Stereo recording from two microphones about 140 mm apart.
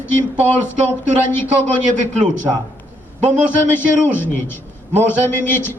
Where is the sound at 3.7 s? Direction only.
15° left (ahead or behind).